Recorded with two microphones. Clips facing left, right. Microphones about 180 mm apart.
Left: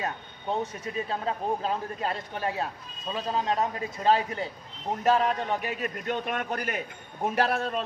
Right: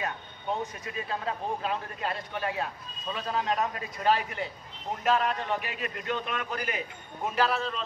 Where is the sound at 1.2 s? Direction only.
35° left (ahead or behind).